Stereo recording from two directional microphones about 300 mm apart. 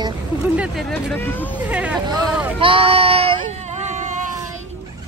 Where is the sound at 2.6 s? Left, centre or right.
Centre.